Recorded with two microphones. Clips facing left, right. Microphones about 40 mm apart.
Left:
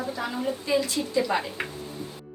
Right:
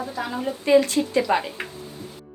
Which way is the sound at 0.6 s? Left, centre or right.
Right.